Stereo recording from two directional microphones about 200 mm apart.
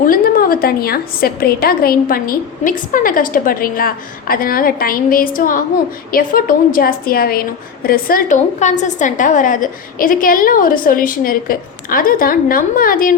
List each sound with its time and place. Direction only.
0.0 s a woman's voice: 45° left (ahead or behind)